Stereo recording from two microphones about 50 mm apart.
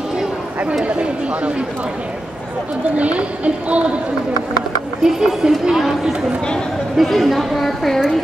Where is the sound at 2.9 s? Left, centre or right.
Right.